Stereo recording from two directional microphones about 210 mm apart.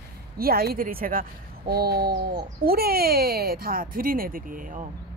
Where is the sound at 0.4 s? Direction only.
45° right (ahead or behind).